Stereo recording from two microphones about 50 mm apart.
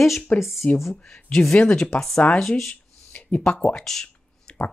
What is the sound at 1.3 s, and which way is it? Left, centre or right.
Speech, centre.